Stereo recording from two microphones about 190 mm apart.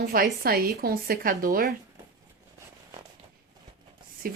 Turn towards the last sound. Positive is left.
turn(degrees=-50)  # may be behind; listen again after turning